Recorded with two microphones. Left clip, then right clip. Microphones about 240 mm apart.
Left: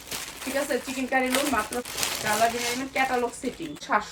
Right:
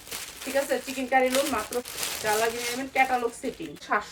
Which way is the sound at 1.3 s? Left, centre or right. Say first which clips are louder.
Left 1 dB; left.